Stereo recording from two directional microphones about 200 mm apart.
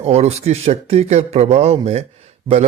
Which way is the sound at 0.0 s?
30° right (ahead or behind).